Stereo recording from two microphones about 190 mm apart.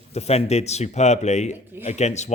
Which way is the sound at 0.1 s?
35° left (ahead or behind).